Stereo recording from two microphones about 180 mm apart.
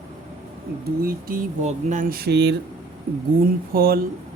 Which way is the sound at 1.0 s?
50° right (ahead or behind).